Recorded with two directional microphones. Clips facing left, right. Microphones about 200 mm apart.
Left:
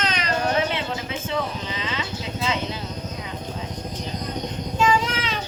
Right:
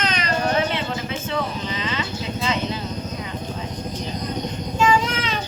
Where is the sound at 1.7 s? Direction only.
5° left (ahead or behind).